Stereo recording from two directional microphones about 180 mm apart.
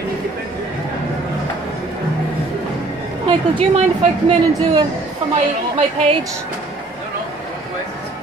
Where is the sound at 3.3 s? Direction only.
30° right (ahead or behind).